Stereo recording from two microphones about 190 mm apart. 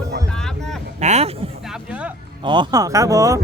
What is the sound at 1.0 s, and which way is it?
Speech, 35° right (ahead or behind).